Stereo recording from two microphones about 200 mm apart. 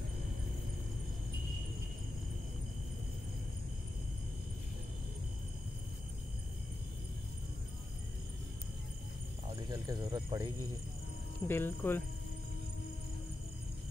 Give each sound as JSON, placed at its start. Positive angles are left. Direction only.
{"t": 9.7, "sound": "speech", "side_deg": -20}
{"t": 11.4, "sound": "speech", "side_deg": 10}